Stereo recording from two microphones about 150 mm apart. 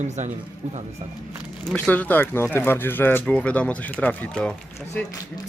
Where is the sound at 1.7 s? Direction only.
5° left (ahead or behind).